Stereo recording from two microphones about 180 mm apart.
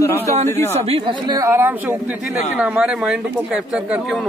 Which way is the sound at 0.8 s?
30° right (ahead or behind).